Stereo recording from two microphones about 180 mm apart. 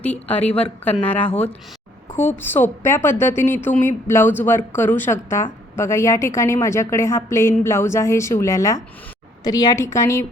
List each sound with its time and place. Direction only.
0.0 s a woman's voice: 10° left (ahead or behind)
2.4 s a woman's voice: 10° left (ahead or behind)